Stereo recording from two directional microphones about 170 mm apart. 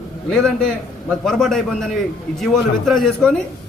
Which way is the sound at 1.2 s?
Centre (ahead or behind).